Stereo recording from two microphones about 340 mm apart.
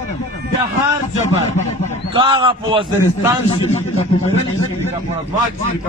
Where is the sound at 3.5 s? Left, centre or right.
Centre.